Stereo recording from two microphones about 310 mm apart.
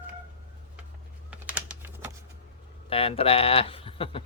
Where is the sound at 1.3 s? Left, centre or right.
Centre.